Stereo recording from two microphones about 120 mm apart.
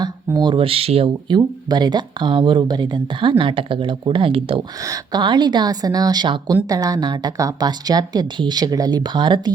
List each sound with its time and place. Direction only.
0.3 s speech: 40° right (ahead or behind)
1.7 s speech: 35° right (ahead or behind)
4.8 s speech: 30° right (ahead or behind)